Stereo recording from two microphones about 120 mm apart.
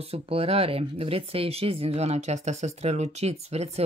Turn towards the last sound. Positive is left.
turn(degrees=-60)  # may be behind; listen again after turning